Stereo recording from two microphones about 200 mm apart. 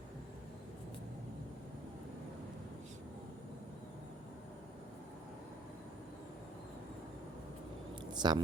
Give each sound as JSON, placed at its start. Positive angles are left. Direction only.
{"t": 8.1, "sound": "speech", "side_deg": -20}